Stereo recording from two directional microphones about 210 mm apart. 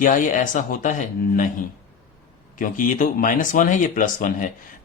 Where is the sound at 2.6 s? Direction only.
40° left (ahead or behind).